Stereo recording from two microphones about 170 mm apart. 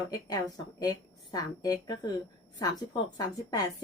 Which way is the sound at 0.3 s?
20° left (ahead or behind).